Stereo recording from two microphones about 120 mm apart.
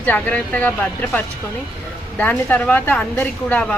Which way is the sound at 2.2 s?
15° left (ahead or behind).